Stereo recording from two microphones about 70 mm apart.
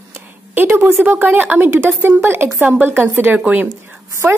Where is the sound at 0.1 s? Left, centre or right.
Right.